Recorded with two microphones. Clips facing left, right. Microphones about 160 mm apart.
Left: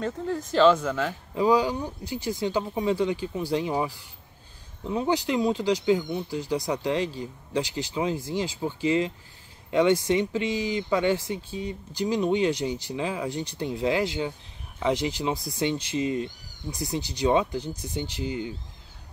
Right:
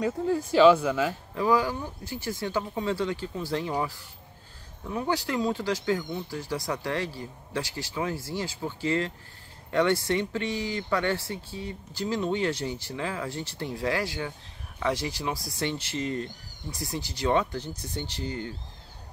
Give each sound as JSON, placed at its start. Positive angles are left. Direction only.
{"t": 0.0, "sound": "speech", "side_deg": -10}
{"t": 1.3, "sound": "speech", "side_deg": 15}